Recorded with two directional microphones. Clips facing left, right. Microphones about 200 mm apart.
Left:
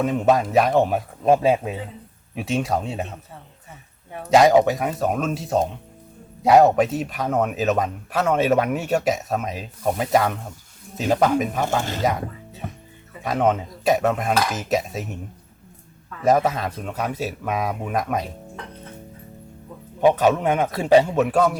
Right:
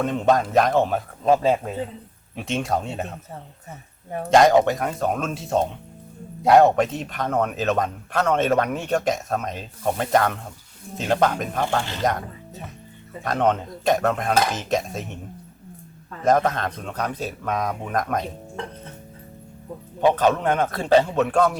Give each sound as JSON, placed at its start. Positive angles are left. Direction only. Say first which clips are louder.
{"t": 0.0, "sound": "a man's voice", "louder": "left 1 dB", "side_deg": 5}
{"t": 3.7, "sound": "speech", "louder": "right 6 dB", "side_deg": -45}
{"t": 4.3, "sound": "a man's voice", "louder": "left 1 dB", "side_deg": 5}
{"t": 11.8, "sound": "speech", "louder": "left 2 dB", "side_deg": 45}
{"t": 13.2, "sound": "a man's voice", "louder": "left 1 dB", "side_deg": 5}
{"t": 16.2, "sound": "a man's voice", "louder": "left 1 dB", "side_deg": 5}
{"t": 20.0, "sound": "speech", "louder": "left 2 dB", "side_deg": 10}